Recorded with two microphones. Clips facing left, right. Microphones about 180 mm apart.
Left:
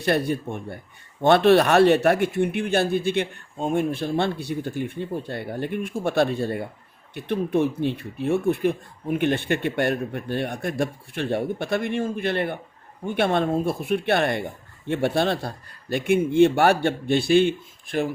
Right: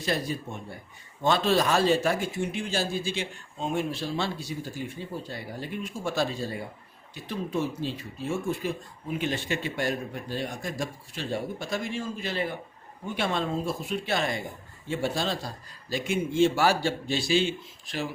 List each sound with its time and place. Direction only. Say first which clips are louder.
0.0 s speech: left 7 dB; 60° left (ahead or behind)